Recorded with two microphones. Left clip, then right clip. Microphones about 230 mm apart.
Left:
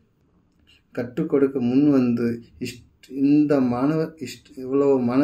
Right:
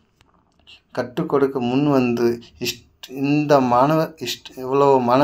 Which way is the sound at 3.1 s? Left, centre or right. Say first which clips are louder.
Right 2 dB; right.